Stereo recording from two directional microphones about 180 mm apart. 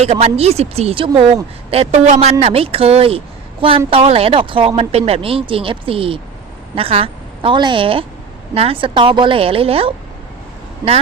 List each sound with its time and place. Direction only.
0.0 s a woman's voice: 35° right (ahead or behind)